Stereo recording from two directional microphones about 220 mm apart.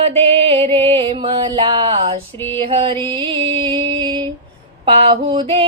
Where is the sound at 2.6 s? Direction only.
25° right (ahead or behind).